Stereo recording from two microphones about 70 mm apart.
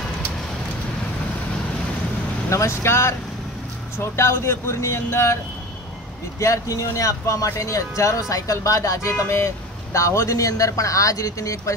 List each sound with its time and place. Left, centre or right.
2.5 s speech: left
6.4 s speech: left